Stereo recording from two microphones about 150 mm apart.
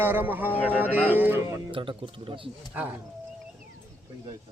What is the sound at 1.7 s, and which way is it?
Speech, 35° right (ahead or behind).